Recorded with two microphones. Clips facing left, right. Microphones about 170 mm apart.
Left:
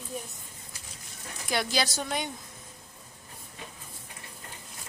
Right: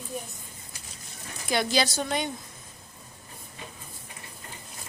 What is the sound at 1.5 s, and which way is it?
Speech, 5° left (ahead or behind).